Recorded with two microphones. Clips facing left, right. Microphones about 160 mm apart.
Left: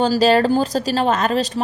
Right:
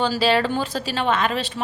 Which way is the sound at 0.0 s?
40° left (ahead or behind).